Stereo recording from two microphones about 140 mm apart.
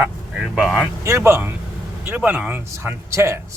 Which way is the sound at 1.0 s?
20° right (ahead or behind).